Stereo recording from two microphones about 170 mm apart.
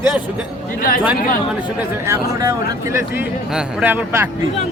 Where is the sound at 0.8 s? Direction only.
55° left (ahead or behind).